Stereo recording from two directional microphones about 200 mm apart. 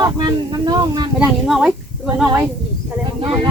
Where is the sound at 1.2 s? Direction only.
Centre (ahead or behind).